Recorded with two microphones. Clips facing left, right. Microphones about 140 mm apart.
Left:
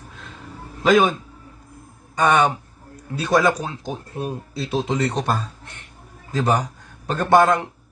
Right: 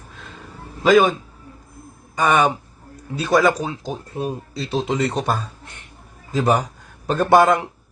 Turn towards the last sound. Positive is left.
turn(degrees=-15)  # may be behind; listen again after turning